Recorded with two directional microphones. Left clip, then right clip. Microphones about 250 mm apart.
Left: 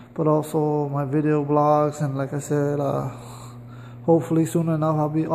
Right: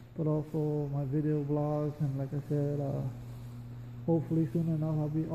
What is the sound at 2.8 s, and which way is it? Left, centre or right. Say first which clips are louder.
Mantra: left 13 dB; left.